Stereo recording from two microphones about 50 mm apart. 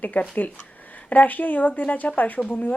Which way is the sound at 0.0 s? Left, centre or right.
Left.